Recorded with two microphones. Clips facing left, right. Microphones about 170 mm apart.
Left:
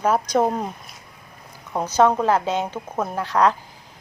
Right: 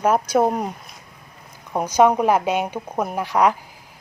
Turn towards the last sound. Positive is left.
turn(degrees=-10)  # may be behind; listen again after turning